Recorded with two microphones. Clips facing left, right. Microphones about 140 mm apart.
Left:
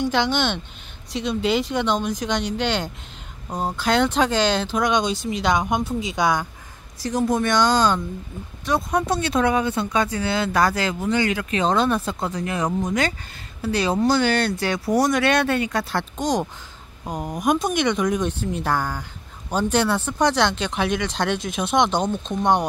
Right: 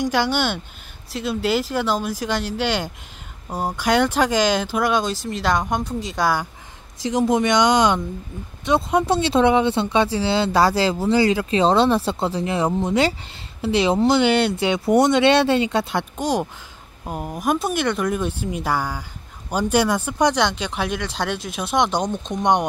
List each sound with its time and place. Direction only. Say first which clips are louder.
0.0 s speech: right 1 dB; 10° right (ahead or behind)
7.0 s speech: right 3 dB; 20° right (ahead or behind)